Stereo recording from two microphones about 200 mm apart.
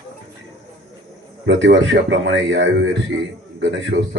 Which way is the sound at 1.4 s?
65° right (ahead or behind).